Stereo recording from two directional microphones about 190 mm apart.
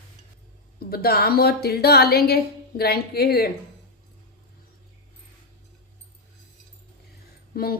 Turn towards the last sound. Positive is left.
turn(degrees=50)  # may be behind; listen again after turning